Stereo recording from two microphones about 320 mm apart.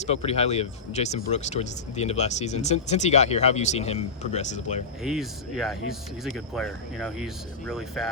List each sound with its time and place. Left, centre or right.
0.0 s speech: centre
5.0 s speech: centre